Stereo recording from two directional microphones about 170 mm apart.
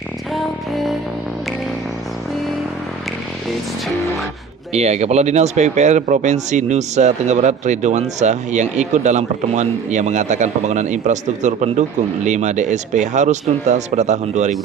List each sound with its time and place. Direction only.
0.3 s music: centre (ahead or behind)
4.7 s speech: 40° right (ahead or behind)